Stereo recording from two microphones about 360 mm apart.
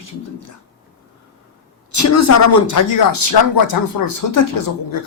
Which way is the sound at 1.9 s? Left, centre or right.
Left.